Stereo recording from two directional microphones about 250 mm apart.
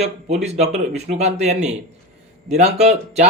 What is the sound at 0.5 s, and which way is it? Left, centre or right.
A man's voice, right.